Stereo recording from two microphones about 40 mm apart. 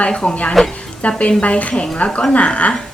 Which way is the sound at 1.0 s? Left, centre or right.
Left.